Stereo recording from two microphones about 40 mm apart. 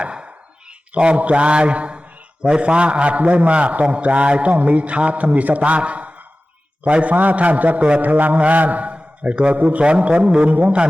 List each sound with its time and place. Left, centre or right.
0.0 s a sound: right
0.9 s a man's voice: right
7.8 s a man's voice: right
8.0 s a man's voice: right
9.6 s a man's voice: right
9.8 s a man's voice: right